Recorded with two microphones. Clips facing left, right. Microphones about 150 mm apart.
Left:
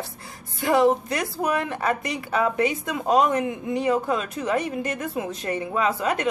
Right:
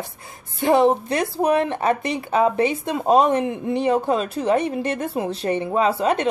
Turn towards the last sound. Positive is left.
turn(degrees=-25)  # may be behind; listen again after turning